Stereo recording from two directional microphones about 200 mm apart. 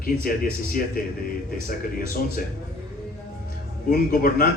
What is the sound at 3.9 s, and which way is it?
Speech, 45° left (ahead or behind).